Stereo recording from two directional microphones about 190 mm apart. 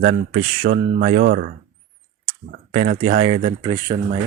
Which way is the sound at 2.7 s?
35° right (ahead or behind).